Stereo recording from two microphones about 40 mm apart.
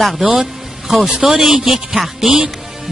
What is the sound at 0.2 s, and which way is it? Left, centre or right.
A man's voice, centre.